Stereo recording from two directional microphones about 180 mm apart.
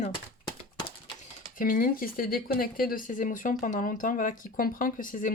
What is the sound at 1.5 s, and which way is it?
Speech, 50° left (ahead or behind).